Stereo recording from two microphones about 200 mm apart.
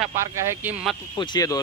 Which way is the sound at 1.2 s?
20° left (ahead or behind).